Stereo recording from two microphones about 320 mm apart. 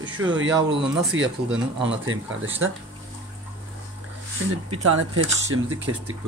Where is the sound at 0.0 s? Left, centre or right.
Centre.